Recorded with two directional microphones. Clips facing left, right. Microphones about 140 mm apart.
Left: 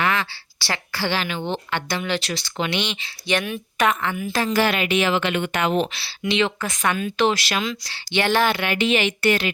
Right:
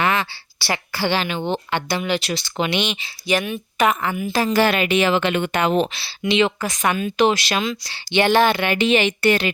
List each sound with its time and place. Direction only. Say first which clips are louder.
0.0 s speech: right 2 dB; 20° right (ahead or behind)
4.6 s a woman's voice: right 3 dB; 40° right (ahead or behind)
6.0 s speech: right 3 dB; 20° right (ahead or behind)